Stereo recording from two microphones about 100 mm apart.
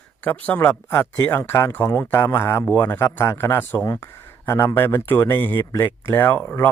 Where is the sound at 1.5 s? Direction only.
30° left (ahead or behind).